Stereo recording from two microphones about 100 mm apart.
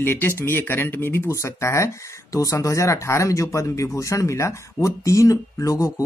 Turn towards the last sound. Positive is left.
turn(degrees=35)  # may be behind; listen again after turning